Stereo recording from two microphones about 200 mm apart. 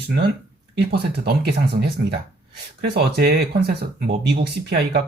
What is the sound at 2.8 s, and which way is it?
Speech, 50° right (ahead or behind).